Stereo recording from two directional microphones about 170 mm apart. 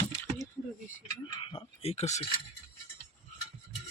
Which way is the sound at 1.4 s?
30° left (ahead or behind).